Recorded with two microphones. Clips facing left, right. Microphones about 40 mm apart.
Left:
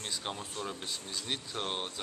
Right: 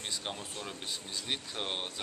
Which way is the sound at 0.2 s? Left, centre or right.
Centre.